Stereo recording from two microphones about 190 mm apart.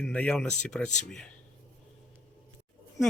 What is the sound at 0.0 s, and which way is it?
Speech, 5° left (ahead or behind).